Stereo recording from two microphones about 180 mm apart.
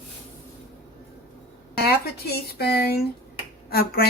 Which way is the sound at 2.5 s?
60° left (ahead or behind).